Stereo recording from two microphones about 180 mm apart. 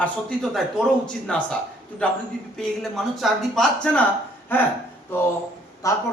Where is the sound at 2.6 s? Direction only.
Centre (ahead or behind); by 6.0 s 20° left (ahead or behind).